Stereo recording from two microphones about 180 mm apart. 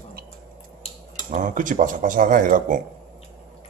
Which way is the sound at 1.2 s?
45° right (ahead or behind).